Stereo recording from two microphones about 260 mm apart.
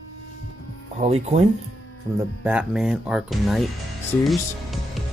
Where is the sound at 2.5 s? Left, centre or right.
Centre.